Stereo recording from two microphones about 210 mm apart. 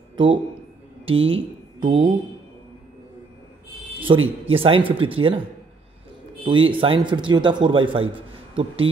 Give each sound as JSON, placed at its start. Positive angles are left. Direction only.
{"t": 0.1, "sound": "a sound", "side_deg": -25}
{"t": 1.0, "sound": "speech", "side_deg": -25}
{"t": 4.1, "sound": "a man's voice", "side_deg": -20}
{"t": 6.4, "sound": "a man's voice", "side_deg": -25}